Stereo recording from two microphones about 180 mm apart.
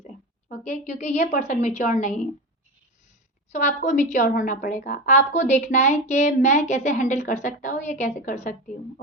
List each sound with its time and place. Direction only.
0.4 s a woman's voice: 45° left (ahead or behind)
3.5 s a woman's voice: 45° left (ahead or behind)